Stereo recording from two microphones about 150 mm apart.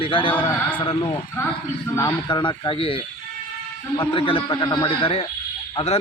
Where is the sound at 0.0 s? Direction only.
35° left (ahead or behind).